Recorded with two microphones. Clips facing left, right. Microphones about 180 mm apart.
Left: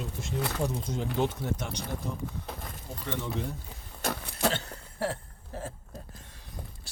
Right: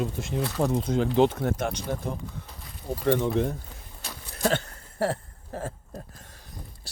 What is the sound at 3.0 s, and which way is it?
Speech, 55° right (ahead or behind).